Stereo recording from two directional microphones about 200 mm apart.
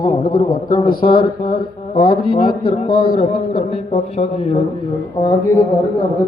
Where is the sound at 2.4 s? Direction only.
45° left (ahead or behind).